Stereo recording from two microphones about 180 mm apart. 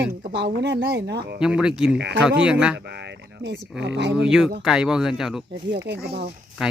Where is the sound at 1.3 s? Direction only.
5° right (ahead or behind).